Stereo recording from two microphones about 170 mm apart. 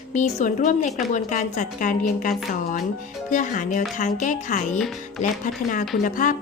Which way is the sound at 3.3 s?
50° left (ahead or behind).